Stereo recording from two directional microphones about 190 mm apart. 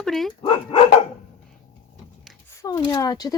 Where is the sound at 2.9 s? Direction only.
20° left (ahead or behind).